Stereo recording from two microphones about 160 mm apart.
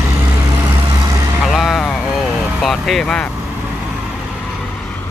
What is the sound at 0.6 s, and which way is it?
Vehicle, 20° right (ahead or behind).